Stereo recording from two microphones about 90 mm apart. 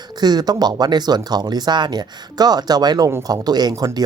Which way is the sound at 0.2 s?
50° right (ahead or behind).